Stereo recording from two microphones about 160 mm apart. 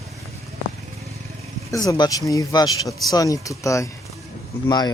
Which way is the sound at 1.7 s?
20° left (ahead or behind).